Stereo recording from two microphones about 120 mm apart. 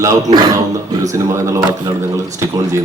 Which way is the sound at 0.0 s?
30° right (ahead or behind).